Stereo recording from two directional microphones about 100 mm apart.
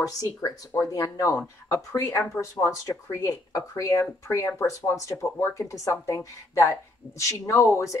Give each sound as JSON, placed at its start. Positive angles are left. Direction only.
{"t": 0.0, "sound": "speech", "side_deg": 35}